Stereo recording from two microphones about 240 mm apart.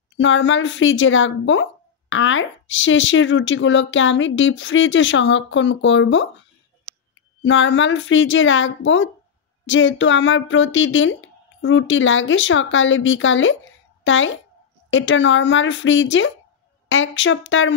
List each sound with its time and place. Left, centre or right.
0.2 s a woman's voice: left
7.4 s a woman's voice: left